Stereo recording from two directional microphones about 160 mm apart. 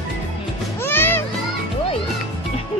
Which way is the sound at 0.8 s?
15° left (ahead or behind).